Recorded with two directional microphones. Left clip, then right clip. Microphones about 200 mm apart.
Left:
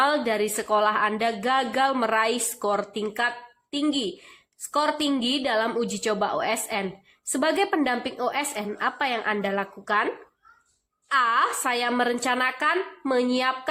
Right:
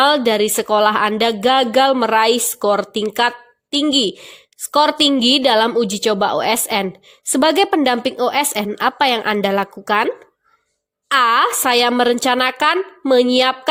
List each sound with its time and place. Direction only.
0.0 s a woman's voice: 45° right (ahead or behind)
11.1 s a woman's voice: 50° right (ahead or behind)